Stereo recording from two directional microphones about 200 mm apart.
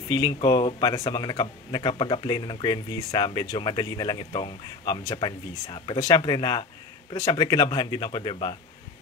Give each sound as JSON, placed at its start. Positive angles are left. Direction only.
{"t": 0.1, "sound": "speech", "side_deg": 20}